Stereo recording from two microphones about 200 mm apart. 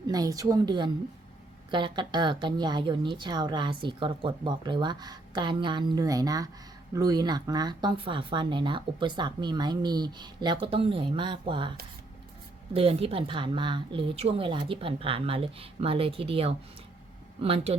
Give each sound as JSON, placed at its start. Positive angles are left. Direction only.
{"t": 0.1, "sound": "speech", "side_deg": -20}
{"t": 12.7, "sound": "speech", "side_deg": -30}